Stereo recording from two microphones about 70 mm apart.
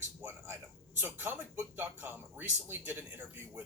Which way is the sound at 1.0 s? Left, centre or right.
Right.